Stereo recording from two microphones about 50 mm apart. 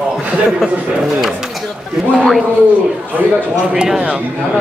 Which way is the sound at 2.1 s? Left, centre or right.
Centre.